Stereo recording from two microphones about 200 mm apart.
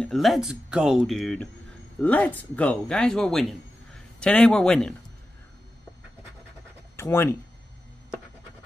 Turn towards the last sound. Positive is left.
turn(degrees=10)  # may be behind; listen again after turning